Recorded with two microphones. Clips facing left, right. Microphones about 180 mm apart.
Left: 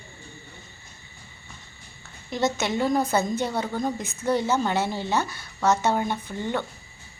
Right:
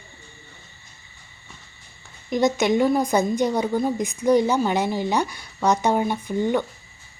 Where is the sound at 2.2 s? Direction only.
15° right (ahead or behind).